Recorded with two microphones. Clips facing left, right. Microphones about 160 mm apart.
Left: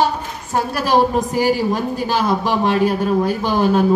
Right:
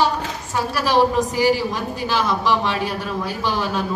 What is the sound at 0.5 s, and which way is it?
A woman's voice, 50° left (ahead or behind).